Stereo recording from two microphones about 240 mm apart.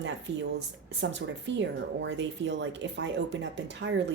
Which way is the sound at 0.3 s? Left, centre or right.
Right.